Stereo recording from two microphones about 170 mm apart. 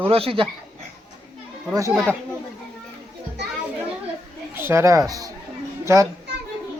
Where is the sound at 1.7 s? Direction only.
20° right (ahead or behind).